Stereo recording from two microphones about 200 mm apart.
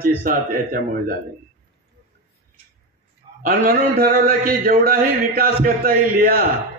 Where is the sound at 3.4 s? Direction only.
45° right (ahead or behind).